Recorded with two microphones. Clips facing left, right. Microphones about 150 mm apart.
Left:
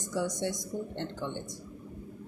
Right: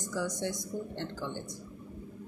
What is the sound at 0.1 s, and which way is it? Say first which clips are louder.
A woman's voice: left 2 dB; 20° left (ahead or behind).